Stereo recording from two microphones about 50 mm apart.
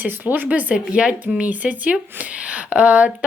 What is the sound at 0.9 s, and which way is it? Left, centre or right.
Speech, centre.